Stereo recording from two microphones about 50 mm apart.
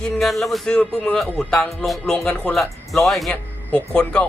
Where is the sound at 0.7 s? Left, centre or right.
Centre.